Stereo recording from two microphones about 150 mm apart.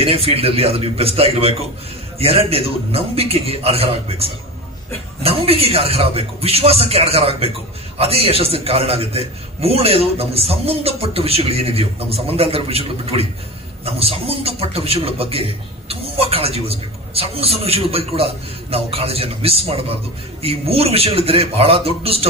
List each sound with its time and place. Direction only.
0.0 s a man's voice: 40° right (ahead or behind)